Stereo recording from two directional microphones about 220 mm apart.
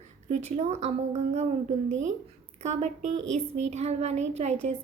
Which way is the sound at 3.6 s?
30° right (ahead or behind).